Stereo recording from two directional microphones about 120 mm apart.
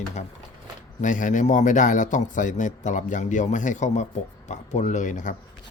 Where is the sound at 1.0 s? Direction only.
90° left.